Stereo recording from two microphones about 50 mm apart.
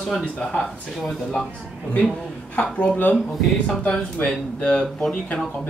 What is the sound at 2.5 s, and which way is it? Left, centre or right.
Speech, left.